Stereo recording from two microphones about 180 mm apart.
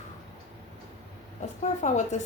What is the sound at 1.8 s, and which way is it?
Speech, 40° left (ahead or behind).